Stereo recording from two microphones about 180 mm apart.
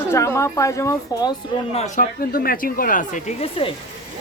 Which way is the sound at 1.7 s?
40° left (ahead or behind).